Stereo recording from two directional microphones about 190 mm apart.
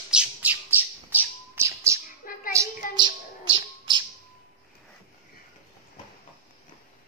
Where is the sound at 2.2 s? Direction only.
45° left (ahead or behind).